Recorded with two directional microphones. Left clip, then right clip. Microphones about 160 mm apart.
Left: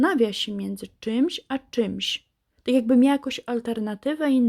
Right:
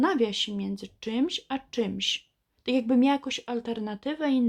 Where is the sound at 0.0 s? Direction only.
35° left (ahead or behind).